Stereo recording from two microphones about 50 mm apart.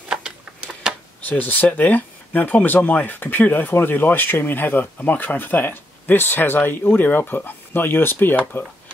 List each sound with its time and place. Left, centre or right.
1.2 s speech: left